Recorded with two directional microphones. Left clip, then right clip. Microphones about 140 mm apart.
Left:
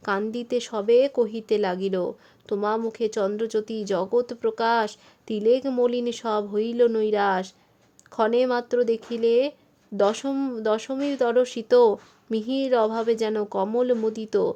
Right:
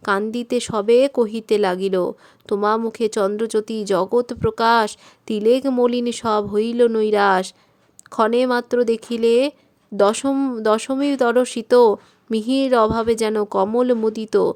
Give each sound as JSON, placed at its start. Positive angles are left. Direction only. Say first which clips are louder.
{"t": 0.0, "sound": "speech", "louder": "right 6 dB", "side_deg": -25}
{"t": 10.6, "sound": "speech", "louder": "right 6 dB", "side_deg": -35}